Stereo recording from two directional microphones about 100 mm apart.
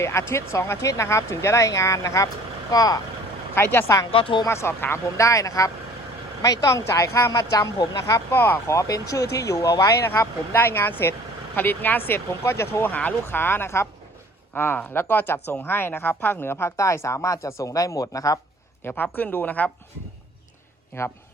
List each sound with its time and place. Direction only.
0.0 s speech: 25° left (ahead or behind)
3.5 s speech: 20° left (ahead or behind)
4.1 s a woman's voice: 65° left (ahead or behind)
4.4 s speech: 25° left (ahead or behind)
10.1 s speech: 20° left (ahead or behind)
18.8 s a man's voice: 20° left (ahead or behind)
20.9 s speech: 25° left (ahead or behind)